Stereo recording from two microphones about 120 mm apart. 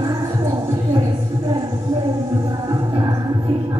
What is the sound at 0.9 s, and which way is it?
Music, 40° right (ahead or behind).